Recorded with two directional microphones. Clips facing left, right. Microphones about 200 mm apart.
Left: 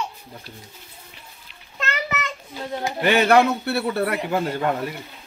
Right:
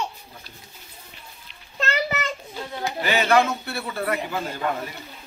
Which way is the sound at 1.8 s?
35° right (ahead or behind).